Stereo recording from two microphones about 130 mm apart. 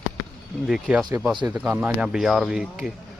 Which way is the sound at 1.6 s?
10° right (ahead or behind).